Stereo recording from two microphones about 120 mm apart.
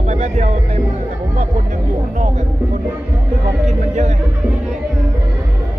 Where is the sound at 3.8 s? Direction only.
75° right (ahead or behind).